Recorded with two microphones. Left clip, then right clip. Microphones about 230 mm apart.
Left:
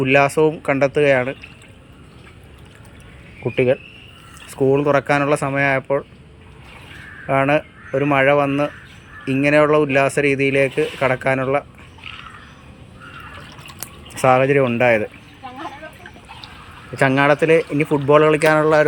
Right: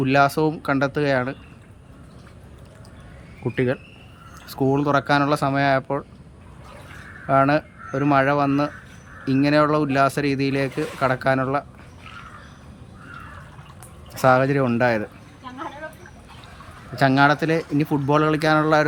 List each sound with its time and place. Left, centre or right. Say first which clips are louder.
0.0 s speech: left 3 dB; centre
0.3 s speech: left 6 dB; centre
0.6 s speech: left 6 dB; centre
3.4 s speech: left 6 dB; centre
7.3 s speech: left 1 dB; centre
9.4 s speech: left 5 dB; centre
14.2 s speech: left 3 dB; centre
16.9 s speech: left 2 dB; centre
17.8 s speech: left 5 dB; centre
18.1 s speech: left 6 dB; centre